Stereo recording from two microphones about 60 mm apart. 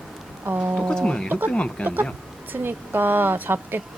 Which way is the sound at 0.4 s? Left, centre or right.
Right.